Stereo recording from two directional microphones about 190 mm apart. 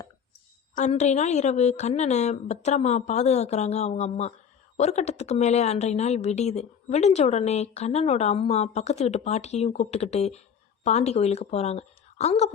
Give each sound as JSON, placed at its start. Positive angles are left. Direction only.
{"t": 0.8, "sound": "a woman's voice", "side_deg": 40}